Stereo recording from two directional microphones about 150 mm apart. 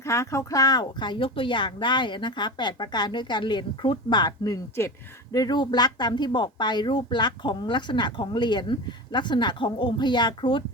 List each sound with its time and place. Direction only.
0.0 s speech: 20° left (ahead or behind)